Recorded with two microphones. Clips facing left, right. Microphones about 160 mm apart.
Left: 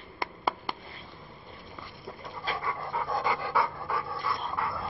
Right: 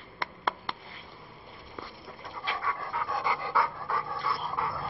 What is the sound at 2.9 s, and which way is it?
Pant, 20° left (ahead or behind).